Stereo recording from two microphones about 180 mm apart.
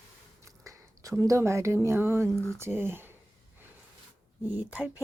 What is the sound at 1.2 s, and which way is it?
Speech, 15° right (ahead or behind).